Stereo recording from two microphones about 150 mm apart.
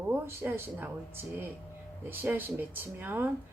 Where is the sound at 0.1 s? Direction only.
15° right (ahead or behind).